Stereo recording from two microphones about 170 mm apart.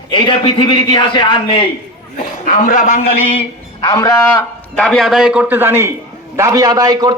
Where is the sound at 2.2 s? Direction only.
55° left (ahead or behind).